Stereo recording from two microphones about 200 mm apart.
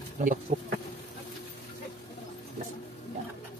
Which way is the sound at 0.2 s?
40° right (ahead or behind).